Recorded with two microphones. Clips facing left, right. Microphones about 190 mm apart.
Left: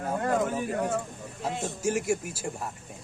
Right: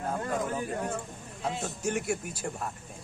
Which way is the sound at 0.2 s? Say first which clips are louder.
Left 5 dB; 70° left (ahead or behind).